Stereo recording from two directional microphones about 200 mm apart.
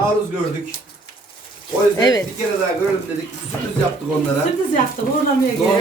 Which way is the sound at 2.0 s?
20° left (ahead or behind).